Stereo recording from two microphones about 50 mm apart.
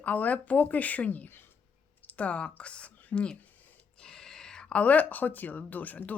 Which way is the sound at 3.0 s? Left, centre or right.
Left.